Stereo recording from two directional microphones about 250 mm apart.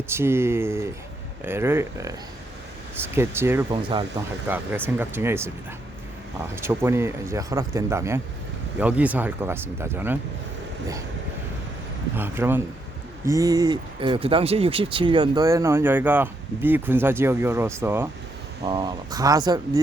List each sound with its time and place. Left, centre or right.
0.1 s speech: centre
3.2 s speech: centre
6.6 s speech: centre
12.1 s speech: centre